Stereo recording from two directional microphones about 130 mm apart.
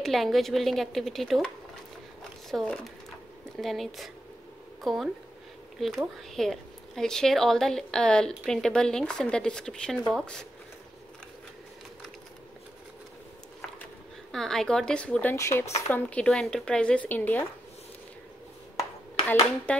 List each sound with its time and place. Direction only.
0.0 s speech: centre (ahead or behind)
2.5 s speech: 5° left (ahead or behind)
6.3 s speech: 5° left (ahead or behind)
14.3 s speech: 5° left (ahead or behind)
15.3 s speech: 20° left (ahead or behind)
15.9 s speech: 10° left (ahead or behind)
19.2 s speech: 10° left (ahead or behind)